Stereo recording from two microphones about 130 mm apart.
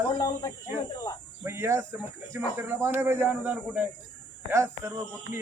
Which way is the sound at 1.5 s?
20° right (ahead or behind).